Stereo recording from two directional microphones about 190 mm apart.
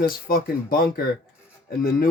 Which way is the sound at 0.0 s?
50° left (ahead or behind).